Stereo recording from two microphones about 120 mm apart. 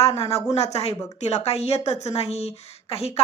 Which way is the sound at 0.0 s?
60° left (ahead or behind).